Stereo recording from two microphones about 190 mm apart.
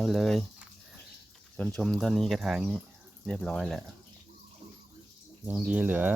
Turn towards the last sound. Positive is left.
turn(degrees=-10)  # may be behind; listen again after turning